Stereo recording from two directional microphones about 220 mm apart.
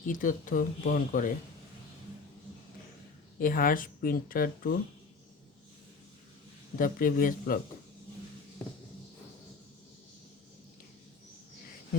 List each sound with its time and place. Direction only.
0.0 s speech: 35° left (ahead or behind)
3.3 s speech: 40° left (ahead or behind)
6.7 s speech: 40° left (ahead or behind)